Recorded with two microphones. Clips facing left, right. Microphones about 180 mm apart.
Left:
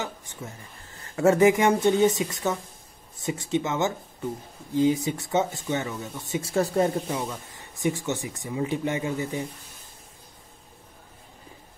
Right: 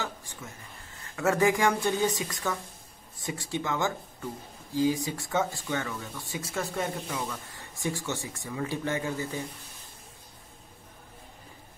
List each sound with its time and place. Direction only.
0.0 s a sound: 20° left (ahead or behind)
1.1 s speech: 25° left (ahead or behind)
6.5 s speech: 35° left (ahead or behind); by 9.4 s 15° left (ahead or behind)